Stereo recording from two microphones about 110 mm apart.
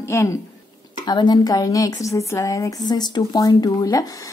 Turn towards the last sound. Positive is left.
turn(degrees=35)  # may be behind; listen again after turning